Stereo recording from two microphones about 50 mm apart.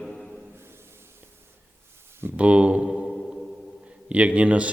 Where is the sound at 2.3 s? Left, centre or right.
Right.